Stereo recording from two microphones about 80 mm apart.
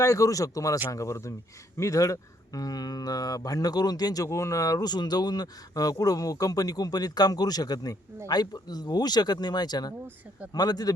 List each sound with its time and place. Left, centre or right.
0.0 s speech: left